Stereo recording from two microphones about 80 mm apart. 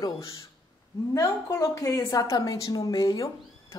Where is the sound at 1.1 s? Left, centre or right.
Left.